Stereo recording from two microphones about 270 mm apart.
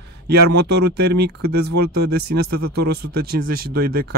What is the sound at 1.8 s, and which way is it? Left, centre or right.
Speech, right.